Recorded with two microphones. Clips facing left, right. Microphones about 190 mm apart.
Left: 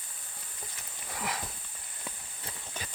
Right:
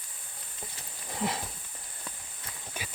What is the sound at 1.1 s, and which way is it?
Horse, 25° right (ahead or behind).